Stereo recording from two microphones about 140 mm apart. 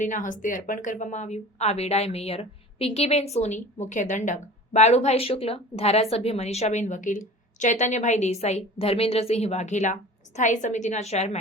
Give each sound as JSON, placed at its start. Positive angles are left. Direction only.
{"t": 0.0, "sound": "a woman's voice", "side_deg": 65}